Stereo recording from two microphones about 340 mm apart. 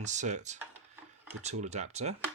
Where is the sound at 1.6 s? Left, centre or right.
Centre.